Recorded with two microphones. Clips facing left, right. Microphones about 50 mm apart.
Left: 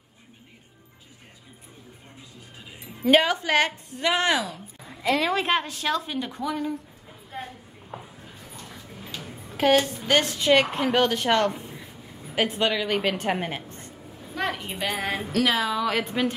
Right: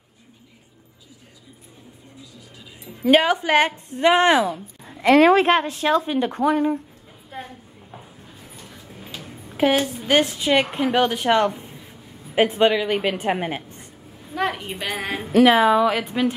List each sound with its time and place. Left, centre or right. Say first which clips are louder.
3.0 s speech: right 3 dB; centre
3.3 s a woman's voice: right 4 dB; right
9.1 s a woman's voice: even; centre
12.4 s a woman's voice: right 5 dB; right; by 15.2 s centre
15.3 s a woman's voice: right 10 dB; right
15.9 s speech: right 3 dB; centre